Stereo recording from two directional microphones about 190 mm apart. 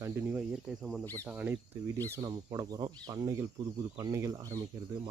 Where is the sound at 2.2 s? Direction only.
20° right (ahead or behind).